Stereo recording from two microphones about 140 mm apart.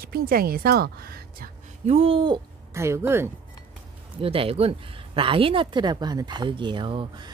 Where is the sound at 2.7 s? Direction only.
20° right (ahead or behind).